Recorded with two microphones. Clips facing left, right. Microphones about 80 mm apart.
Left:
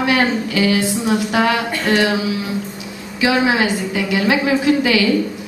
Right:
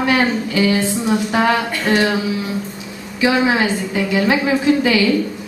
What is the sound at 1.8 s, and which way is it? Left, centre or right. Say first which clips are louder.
Speech: even; centre.